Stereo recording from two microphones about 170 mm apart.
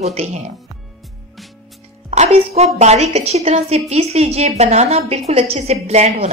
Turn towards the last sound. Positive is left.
turn(degrees=-40)  # may be behind; listen again after turning